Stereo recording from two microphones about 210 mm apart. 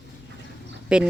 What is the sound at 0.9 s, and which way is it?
Speech, 5° right (ahead or behind).